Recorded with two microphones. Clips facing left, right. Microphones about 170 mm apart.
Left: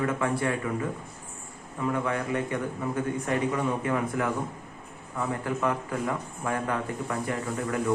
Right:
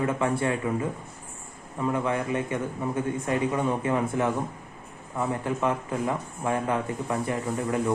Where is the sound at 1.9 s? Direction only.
20° right (ahead or behind).